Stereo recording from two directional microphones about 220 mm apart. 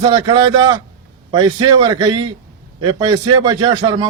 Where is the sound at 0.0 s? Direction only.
20° right (ahead or behind).